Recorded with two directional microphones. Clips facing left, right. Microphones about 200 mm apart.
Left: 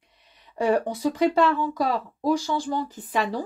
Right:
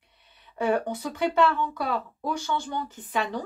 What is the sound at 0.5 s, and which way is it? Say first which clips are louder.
Speech: left 3 dB; 35° left (ahead or behind).